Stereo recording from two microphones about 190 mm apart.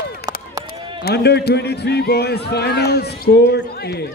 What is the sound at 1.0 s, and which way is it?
A man's voice, 60° left (ahead or behind).